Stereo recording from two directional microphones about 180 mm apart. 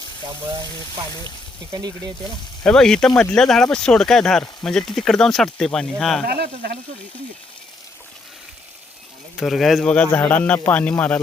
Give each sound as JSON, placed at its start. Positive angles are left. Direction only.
{"t": 1.7, "sound": "speech", "side_deg": -20}
{"t": 2.6, "sound": "speech", "side_deg": 5}
{"t": 6.2, "sound": "speech", "side_deg": -60}
{"t": 9.4, "sound": "a man's voice", "side_deg": 0}